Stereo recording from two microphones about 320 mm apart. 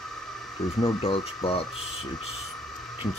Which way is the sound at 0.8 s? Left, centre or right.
Centre.